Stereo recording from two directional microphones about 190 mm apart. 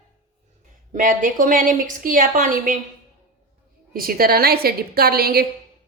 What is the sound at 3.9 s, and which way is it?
A woman's voice, 50° right (ahead or behind).